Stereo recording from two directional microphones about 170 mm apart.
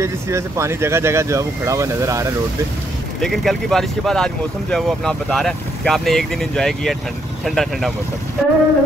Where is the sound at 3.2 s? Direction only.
Centre (ahead or behind).